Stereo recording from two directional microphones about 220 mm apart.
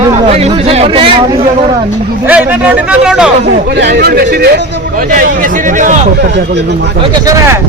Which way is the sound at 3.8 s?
50° right (ahead or behind).